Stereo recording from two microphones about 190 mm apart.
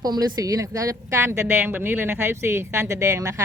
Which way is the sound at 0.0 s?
20° right (ahead or behind).